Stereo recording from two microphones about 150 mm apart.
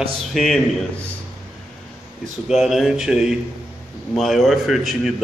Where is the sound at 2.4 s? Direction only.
Centre (ahead or behind).